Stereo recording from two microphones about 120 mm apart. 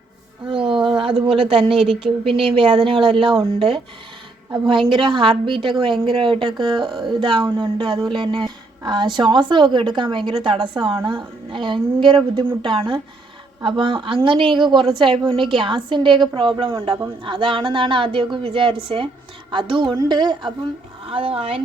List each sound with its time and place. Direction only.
0.4 s music: 45° right (ahead or behind)
1.2 s a woman's voice: 50° right (ahead or behind)
21.1 s speech: 50° right (ahead or behind)